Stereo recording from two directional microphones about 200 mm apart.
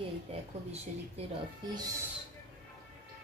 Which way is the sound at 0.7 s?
30° right (ahead or behind).